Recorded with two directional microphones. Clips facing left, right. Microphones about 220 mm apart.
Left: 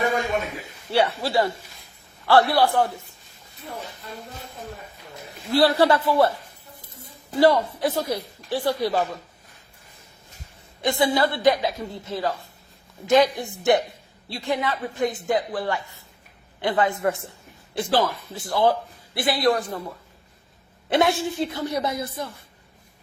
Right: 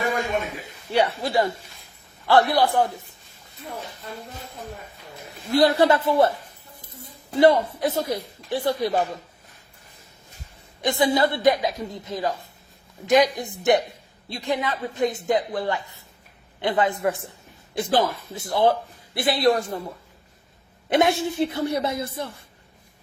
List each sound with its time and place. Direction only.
0.9 s speech: 20° right (ahead or behind)
5.5 s speech: 20° right (ahead or behind)
7.3 s speech: 20° right (ahead or behind)
10.8 s speech: 20° right (ahead or behind)
20.9 s speech: 20° right (ahead or behind)